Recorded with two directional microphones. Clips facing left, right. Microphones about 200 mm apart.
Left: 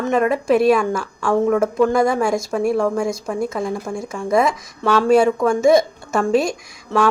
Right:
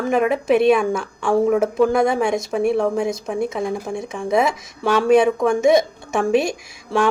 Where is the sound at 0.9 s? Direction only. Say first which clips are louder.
Even; 25° right (ahead or behind).